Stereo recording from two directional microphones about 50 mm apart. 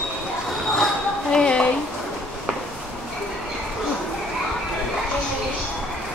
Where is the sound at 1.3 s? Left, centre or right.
Centre.